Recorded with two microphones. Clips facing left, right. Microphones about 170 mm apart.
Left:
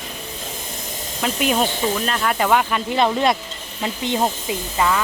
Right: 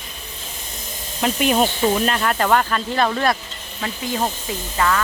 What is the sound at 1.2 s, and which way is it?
Speech, centre (ahead or behind).